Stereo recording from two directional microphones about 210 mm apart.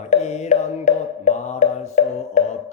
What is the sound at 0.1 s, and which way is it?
Music, 35° left (ahead or behind).